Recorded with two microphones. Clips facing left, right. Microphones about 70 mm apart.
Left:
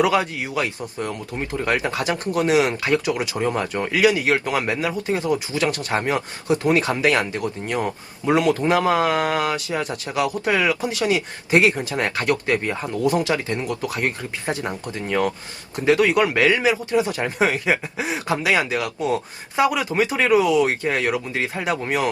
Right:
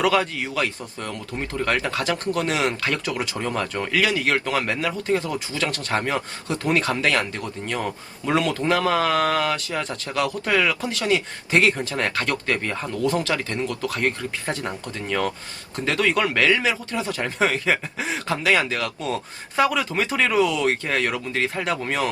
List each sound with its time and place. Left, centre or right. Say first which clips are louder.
0.0 s speech: left 1 dB; centre